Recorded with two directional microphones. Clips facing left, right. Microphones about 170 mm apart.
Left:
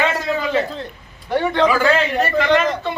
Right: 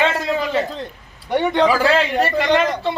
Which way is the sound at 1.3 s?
20° right (ahead or behind).